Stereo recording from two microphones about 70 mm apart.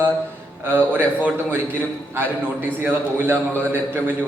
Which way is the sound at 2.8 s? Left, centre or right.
Right.